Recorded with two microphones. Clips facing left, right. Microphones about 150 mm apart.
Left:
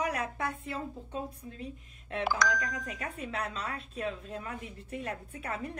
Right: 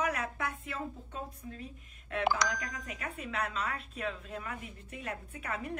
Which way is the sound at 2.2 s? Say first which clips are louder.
Even; 20° right (ahead or behind).